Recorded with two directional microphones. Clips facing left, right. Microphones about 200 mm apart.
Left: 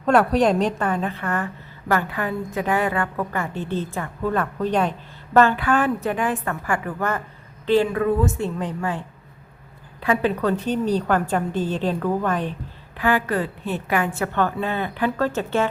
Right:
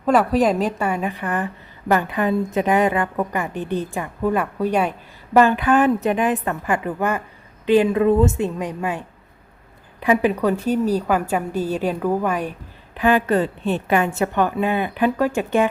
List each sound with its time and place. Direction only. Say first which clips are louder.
0.0 s a woman's voice: right 1 dB; centre (ahead or behind)
13.0 s a woman's voice: right 4 dB; 20° right (ahead or behind)